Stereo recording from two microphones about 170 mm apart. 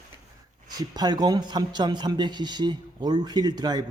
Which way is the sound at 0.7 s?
25° right (ahead or behind).